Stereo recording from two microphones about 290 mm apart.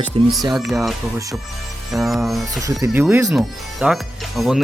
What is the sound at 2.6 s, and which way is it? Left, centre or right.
Speech, centre.